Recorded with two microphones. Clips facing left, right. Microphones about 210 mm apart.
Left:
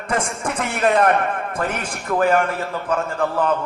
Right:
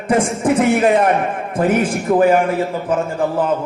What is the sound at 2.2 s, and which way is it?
Speech, 10° right (ahead or behind).